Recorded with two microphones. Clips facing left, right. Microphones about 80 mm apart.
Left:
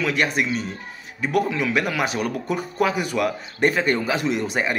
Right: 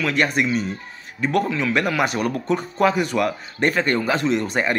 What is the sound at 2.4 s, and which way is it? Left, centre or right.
Speech, centre.